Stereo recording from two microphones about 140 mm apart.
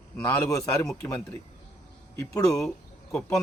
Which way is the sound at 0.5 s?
20° left (ahead or behind).